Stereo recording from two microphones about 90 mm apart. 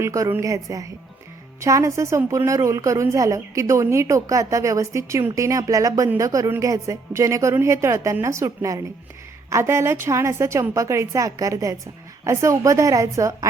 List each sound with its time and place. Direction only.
0.0 s a woman's voice: 35° right (ahead or behind)